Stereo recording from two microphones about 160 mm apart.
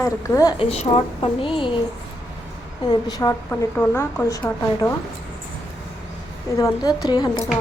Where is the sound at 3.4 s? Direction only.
15° left (ahead or behind).